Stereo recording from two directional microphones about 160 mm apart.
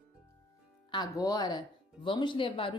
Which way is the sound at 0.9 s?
25° left (ahead or behind).